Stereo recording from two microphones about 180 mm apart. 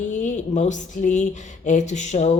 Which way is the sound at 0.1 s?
45° left (ahead or behind).